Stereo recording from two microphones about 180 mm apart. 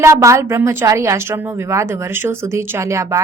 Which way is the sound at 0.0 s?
15° right (ahead or behind).